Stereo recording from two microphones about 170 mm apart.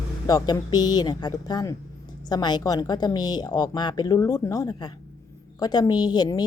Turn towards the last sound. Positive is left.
turn(degrees=25)  # may be behind; listen again after turning